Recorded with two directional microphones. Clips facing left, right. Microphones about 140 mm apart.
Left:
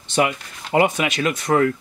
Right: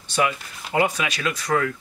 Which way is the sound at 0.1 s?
25° left (ahead or behind).